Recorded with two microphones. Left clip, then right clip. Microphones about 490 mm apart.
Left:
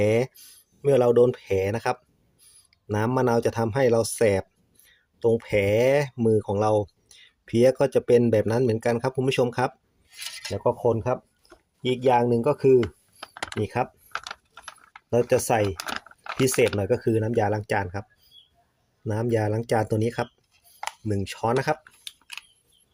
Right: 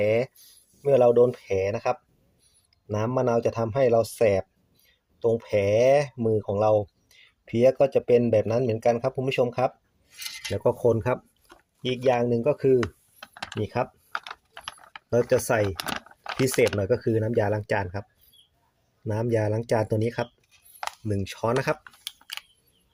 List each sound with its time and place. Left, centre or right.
0.8 s speech: right
10.5 s speech: right
12.0 s speech: right
13.3 s typing: right
15.1 s speech: right
19.0 s speech: right
22.0 s a sound: right